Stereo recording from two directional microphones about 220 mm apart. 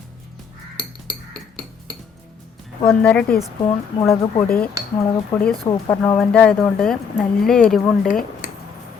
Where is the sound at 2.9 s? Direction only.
5° left (ahead or behind).